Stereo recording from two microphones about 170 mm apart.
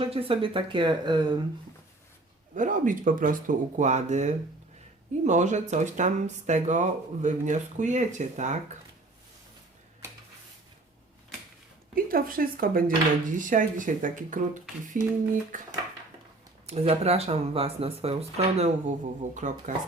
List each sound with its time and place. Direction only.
0.0 s speech: 35° right (ahead or behind)
2.6 s speech: 50° right (ahead or behind)
11.9 s speech: 60° right (ahead or behind)
16.6 s speech: 40° right (ahead or behind)